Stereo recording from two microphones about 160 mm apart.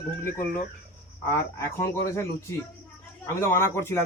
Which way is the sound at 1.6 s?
15° left (ahead or behind).